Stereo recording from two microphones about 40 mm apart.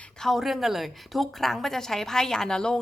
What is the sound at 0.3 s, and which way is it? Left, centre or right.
A woman's voice, centre.